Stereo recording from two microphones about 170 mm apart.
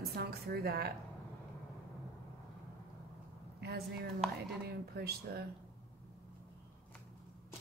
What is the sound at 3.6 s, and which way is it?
A woman's voice, 70° right (ahead or behind).